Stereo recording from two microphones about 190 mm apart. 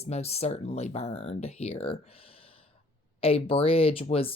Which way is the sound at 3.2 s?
30° left (ahead or behind).